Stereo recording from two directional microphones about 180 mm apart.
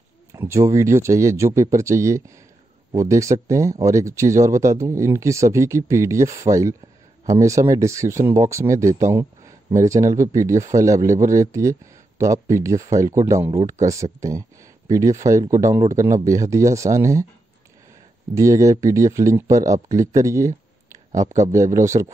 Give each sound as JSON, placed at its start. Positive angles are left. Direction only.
{"t": 0.3, "sound": "speech", "side_deg": -15}
{"t": 18.3, "sound": "speech", "side_deg": -15}